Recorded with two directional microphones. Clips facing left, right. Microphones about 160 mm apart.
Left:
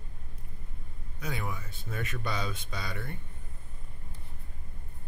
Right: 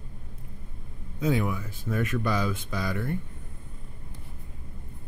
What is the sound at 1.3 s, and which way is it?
Speech, 15° right (ahead or behind).